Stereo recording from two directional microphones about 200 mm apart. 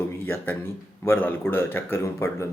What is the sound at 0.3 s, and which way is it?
A man's voice, 10° left (ahead or behind).